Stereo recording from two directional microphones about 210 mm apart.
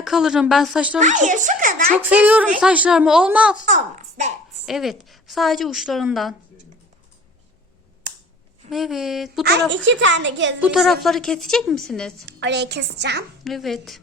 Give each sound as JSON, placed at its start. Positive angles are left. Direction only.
{"t": 0.0, "sound": "a woman's voice", "side_deg": -5}
{"t": 0.9, "sound": "a woman's voice", "side_deg": -35}
{"t": 2.0, "sound": "a woman's voice", "side_deg": -5}
{"t": 3.7, "sound": "a child's voice", "side_deg": -40}
{"t": 4.6, "sound": "a woman's voice", "side_deg": 0}
{"t": 8.7, "sound": "a woman's voice", "side_deg": 0}
{"t": 9.4, "sound": "speech", "side_deg": -55}
{"t": 10.6, "sound": "a woman's voice", "side_deg": 0}
{"t": 12.2, "sound": "a woman's voice", "side_deg": -55}
{"t": 13.4, "sound": "a woman's voice", "side_deg": 0}